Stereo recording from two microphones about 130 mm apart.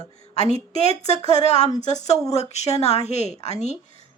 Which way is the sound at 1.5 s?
55° left (ahead or behind).